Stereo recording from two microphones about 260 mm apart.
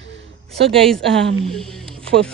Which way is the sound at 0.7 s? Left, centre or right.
Centre.